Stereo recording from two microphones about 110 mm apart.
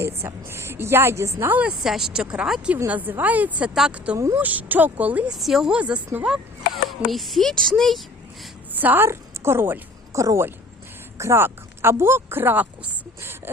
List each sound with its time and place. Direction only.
0.0 s a woman's voice: 20° right (ahead or behind)
1.5 s speech: 10° right (ahead or behind)
5.4 s speech: 5° right (ahead or behind)
8.7 s a woman's voice: 15° right (ahead or behind)